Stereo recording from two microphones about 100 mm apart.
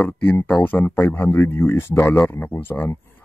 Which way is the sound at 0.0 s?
15° left (ahead or behind).